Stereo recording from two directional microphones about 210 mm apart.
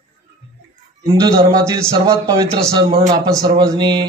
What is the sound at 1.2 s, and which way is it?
A man's voice, 15° right (ahead or behind).